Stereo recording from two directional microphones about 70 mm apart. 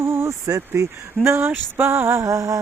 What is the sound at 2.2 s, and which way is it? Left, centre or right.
Speech, right.